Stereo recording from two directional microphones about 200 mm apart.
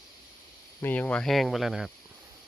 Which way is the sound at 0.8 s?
10° left (ahead or behind).